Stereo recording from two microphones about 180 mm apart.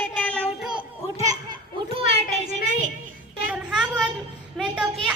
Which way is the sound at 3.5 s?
5° right (ahead or behind).